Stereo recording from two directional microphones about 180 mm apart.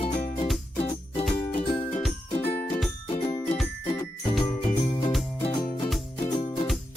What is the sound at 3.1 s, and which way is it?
Music, 35° left (ahead or behind).